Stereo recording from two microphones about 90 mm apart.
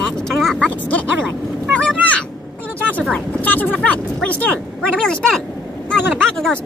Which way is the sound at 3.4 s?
20° left (ahead or behind).